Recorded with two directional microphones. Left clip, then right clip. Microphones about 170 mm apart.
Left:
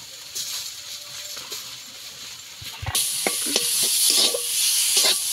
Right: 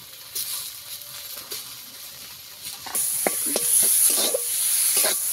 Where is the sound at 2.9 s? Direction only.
10° right (ahead or behind).